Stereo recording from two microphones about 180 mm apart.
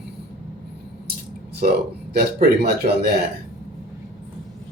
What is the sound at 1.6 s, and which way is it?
Speech, 45° right (ahead or behind).